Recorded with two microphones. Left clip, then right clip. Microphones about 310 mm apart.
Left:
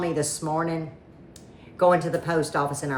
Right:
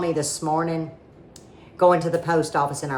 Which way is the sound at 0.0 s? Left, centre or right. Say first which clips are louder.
Right 3 dB; centre.